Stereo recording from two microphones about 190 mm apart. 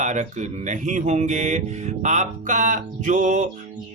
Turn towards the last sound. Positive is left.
turn(degrees=-40)  # may be behind; listen again after turning